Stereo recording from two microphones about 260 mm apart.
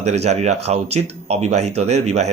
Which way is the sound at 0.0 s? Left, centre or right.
Right.